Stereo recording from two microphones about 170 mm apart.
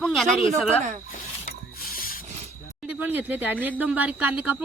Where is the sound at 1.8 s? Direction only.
55° left (ahead or behind).